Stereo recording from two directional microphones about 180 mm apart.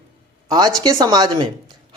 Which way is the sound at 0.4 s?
25° right (ahead or behind).